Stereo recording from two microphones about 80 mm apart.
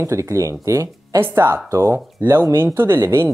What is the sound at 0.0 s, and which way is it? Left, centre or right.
Speech, right.